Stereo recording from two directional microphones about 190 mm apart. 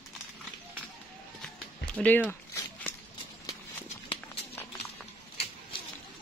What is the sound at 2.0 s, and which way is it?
Speech, 10° left (ahead or behind).